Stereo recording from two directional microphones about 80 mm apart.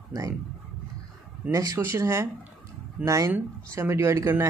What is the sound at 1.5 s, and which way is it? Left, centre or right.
Speech, right.